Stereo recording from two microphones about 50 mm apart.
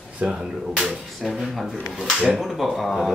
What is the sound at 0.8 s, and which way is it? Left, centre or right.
Speech, centre.